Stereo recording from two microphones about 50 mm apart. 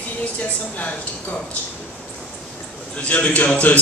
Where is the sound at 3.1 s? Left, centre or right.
Left.